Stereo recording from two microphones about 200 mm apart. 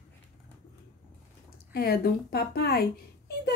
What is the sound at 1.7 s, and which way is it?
Speech, 50° left (ahead or behind).